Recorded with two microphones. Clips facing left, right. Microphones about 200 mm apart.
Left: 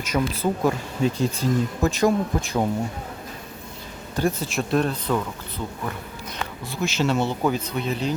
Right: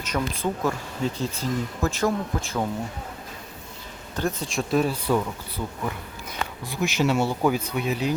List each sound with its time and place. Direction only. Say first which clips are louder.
0.0 s speech: left 3 dB; 10° left (ahead or behind)
4.2 s speech: left 3 dB; 10° left (ahead or behind); by 5.2 s 10° right (ahead or behind)
6.7 s speech: even; 15° right (ahead or behind)